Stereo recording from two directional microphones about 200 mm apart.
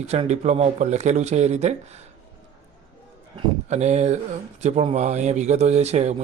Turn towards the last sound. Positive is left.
turn(degrees=-35)  # may be behind; listen again after turning